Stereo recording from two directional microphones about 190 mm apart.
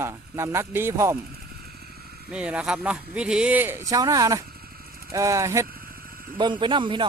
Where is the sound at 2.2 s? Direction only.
5° right (ahead or behind).